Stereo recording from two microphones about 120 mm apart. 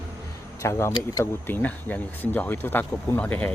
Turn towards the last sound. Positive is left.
turn(degrees=10)  # may be behind; listen again after turning